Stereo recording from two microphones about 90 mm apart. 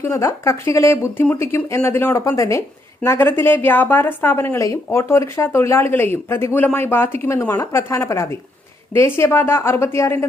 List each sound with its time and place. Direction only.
0.0 s a woman's voice: 30° left (ahead or behind)